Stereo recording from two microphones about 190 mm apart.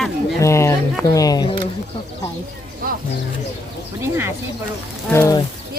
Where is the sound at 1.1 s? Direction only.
20° left (ahead or behind).